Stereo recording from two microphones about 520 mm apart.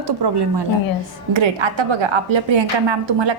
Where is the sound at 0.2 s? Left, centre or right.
Right.